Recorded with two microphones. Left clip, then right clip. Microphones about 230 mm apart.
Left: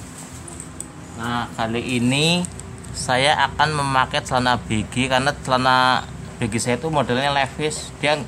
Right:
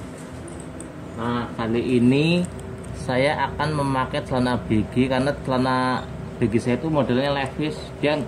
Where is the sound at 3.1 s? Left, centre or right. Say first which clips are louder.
Left 4 dB; centre.